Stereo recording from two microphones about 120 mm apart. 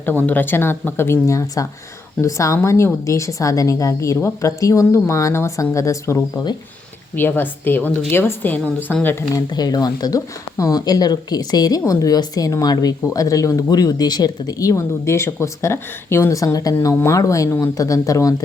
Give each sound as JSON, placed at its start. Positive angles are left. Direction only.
{"t": 0.0, "sound": "a woman's voice", "side_deg": 15}
{"t": 9.3, "sound": "a woman's voice", "side_deg": 30}